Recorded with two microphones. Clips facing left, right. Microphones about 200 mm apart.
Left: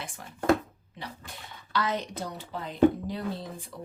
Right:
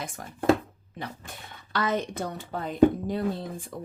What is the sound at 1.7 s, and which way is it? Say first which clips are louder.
Speech: right 3 dB; 50° right (ahead or behind).